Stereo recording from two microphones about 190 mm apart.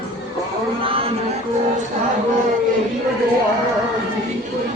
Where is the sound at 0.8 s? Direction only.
30° right (ahead or behind).